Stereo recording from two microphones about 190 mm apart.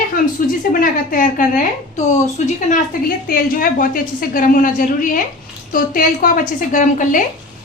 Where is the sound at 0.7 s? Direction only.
45° left (ahead or behind).